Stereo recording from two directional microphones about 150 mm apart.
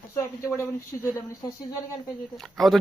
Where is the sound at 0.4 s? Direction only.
15° left (ahead or behind).